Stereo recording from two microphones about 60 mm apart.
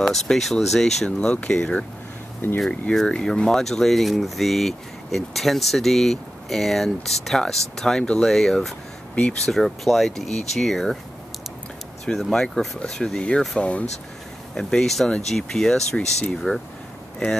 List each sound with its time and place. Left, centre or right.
0.0 s speech: centre
1.0 s speech: centre
2.4 s speech: left
3.1 s speech: centre
12.1 s speech: centre; by 13.8 s left
14.5 s speech: centre